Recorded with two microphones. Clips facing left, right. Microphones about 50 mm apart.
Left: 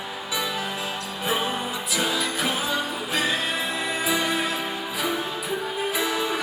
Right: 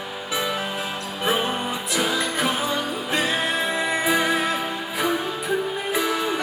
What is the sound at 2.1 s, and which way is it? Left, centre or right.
Music, right.